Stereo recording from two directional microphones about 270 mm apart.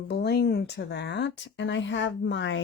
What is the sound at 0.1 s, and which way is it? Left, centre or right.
Speech, left.